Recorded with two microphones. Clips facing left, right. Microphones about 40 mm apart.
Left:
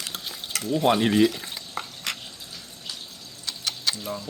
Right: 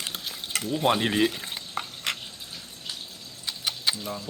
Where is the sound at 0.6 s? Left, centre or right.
Centre.